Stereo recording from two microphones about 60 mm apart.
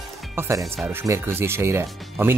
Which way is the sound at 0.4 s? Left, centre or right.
Right.